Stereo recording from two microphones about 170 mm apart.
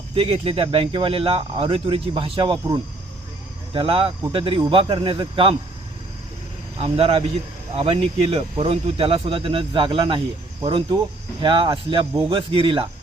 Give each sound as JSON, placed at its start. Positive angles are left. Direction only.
{"t": 0.1, "sound": "speech", "side_deg": -35}
{"t": 6.7, "sound": "speech", "side_deg": -35}